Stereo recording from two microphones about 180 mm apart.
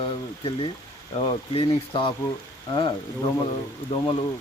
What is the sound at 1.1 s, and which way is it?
Speech, 30° left (ahead or behind).